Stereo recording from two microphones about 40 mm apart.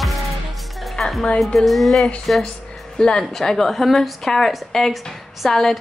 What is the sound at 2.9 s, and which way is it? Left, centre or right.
A woman's voice, centre.